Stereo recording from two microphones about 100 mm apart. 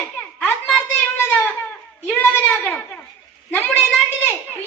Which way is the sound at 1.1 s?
20° left (ahead or behind).